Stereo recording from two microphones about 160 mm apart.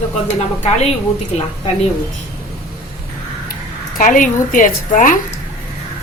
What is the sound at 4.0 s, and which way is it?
A woman's voice, 55° left (ahead or behind).